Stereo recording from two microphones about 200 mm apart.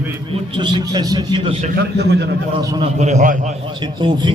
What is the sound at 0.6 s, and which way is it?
Speech, 25° right (ahead or behind).